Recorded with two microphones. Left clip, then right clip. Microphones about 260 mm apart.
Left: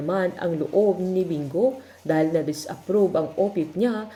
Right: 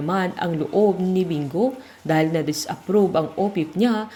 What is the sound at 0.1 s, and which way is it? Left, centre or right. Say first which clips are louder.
Speech: even; right.